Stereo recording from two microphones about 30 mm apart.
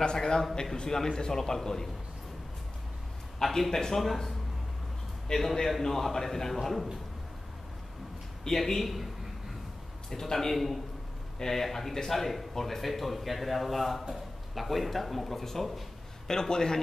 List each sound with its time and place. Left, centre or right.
0.0 s a man's voice: left
3.3 s a man's voice: centre
5.3 s a man's voice: centre
8.5 s a man's voice: left
8.8 s a man's voice: centre
10.0 s a man's voice: centre
16.3 s a man's voice: centre